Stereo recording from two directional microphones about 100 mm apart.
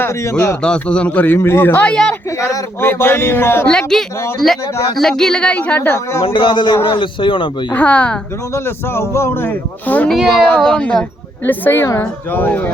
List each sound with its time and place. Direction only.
0.0 s speech: 30° left (ahead or behind)
0.6 s a man's voice: 10° left (ahead or behind)
1.9 s a man's voice: 10° left (ahead or behind)
2.4 s speech: 25° left (ahead or behind)
3.7 s a man's voice: 5° left (ahead or behind)
6.2 s a man's voice: 55° left (ahead or behind)
7.7 s a man's voice: 15° left (ahead or behind)
8.5 s a man's voice: 25° left (ahead or behind); by 11.0 s 10° left (ahead or behind)
11.4 s speech: 20° left (ahead or behind)